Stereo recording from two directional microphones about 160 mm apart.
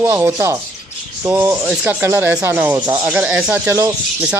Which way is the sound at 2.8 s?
25° right (ahead or behind).